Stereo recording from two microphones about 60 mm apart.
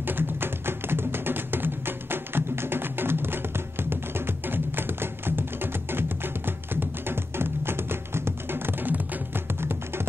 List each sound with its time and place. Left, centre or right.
0.0 s music: right